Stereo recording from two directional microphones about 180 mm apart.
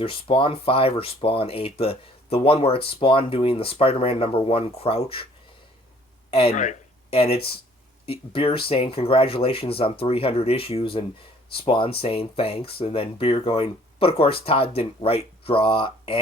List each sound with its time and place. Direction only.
0.0 s speech: 30° left (ahead or behind)
6.3 s speech: 35° left (ahead or behind)